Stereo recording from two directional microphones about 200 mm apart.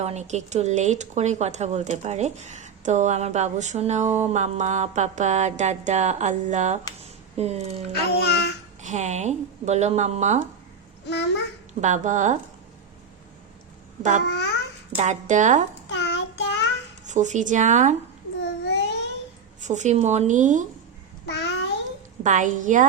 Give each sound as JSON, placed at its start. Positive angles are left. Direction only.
{"t": 0.0, "sound": "speech", "side_deg": -35}
{"t": 8.3, "sound": "child singing", "side_deg": 55}
{"t": 8.8, "sound": "speech", "side_deg": -35}
{"t": 11.0, "sound": "a child's voice", "side_deg": 60}
{"t": 11.8, "sound": "speech", "side_deg": -40}
{"t": 14.3, "sound": "a child's voice", "side_deg": 60}
{"t": 14.9, "sound": "speech", "side_deg": -35}
{"t": 15.9, "sound": "child singing", "side_deg": 60}
{"t": 17.1, "sound": "speech", "side_deg": -35}
{"t": 18.3, "sound": "babbling", "side_deg": 60}
{"t": 19.5, "sound": "speech", "side_deg": -35}
{"t": 21.2, "sound": "babbling", "side_deg": 60}
{"t": 22.2, "sound": "speech", "side_deg": -40}